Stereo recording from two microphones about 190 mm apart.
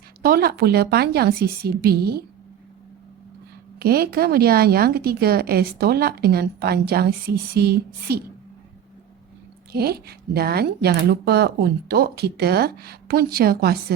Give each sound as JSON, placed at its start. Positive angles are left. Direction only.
{"t": 0.2, "sound": "a woman's voice", "side_deg": -50}
{"t": 3.8, "sound": "a woman's voice", "side_deg": -55}
{"t": 9.7, "sound": "a woman's voice", "side_deg": -55}